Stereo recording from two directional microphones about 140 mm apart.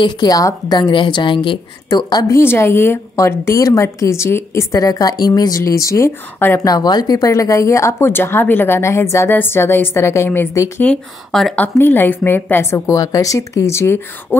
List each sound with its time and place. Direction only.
0.0 s a woman's voice: 30° left (ahead or behind)
6.7 s a woman's voice: 30° left (ahead or behind)
10.8 s a woman's voice: 5° left (ahead or behind)